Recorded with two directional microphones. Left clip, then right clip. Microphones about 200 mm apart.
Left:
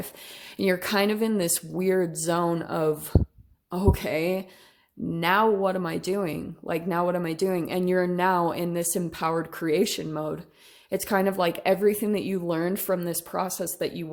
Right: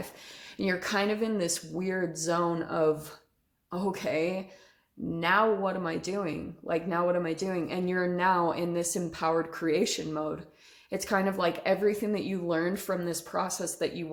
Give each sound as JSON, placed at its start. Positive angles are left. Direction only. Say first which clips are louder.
{"t": 0.5, "sound": "speech", "louder": "left 5 dB", "side_deg": 40}